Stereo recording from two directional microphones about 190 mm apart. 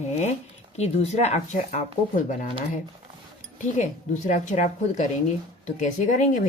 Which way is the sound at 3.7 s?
40° left (ahead or behind).